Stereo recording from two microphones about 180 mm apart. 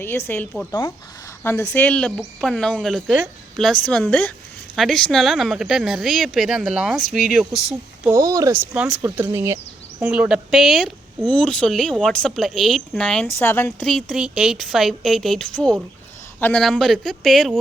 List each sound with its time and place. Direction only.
0.0 s a woman's voice: 15° left (ahead or behind)
8.1 s speech: 20° right (ahead or behind)
8.7 s speech: 5° right (ahead or behind)
10.1 s speech: 5° right (ahead or behind)